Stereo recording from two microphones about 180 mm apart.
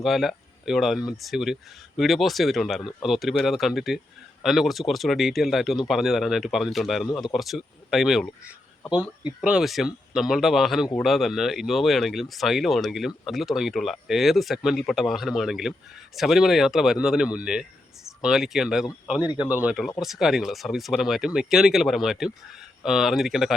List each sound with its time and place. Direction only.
0.0 s speech: centre (ahead or behind)
19.2 s speech: 25° left (ahead or behind)
19.5 s speech: 10° right (ahead or behind)